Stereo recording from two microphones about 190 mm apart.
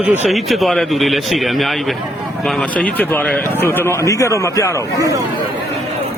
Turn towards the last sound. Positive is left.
turn(degrees=15)  # may be behind; listen again after turning